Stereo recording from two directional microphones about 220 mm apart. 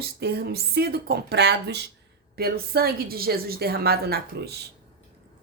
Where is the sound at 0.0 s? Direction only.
45° right (ahead or behind).